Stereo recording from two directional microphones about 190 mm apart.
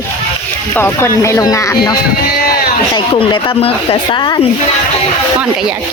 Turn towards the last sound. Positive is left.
turn(degrees=20)  # may be behind; listen again after turning